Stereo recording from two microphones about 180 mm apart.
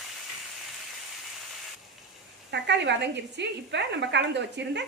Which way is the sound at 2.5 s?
70° right (ahead or behind).